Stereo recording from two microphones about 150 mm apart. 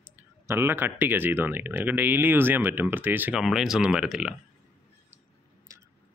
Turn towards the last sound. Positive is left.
turn(degrees=-5)  # may be behind; listen again after turning